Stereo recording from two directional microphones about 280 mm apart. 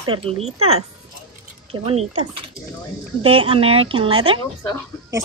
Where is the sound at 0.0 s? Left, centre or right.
Centre.